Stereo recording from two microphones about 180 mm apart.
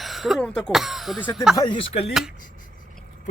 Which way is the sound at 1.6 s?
30° left (ahead or behind).